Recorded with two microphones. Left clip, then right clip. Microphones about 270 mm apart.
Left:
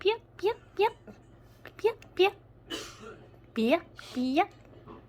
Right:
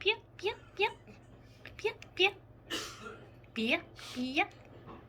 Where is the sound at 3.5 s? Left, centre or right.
Left.